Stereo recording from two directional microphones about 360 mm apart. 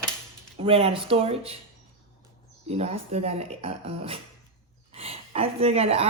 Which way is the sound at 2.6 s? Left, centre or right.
Centre.